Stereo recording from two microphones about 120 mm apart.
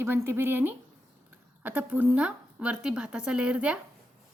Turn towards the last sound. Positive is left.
turn(degrees=-10)  # may be behind; listen again after turning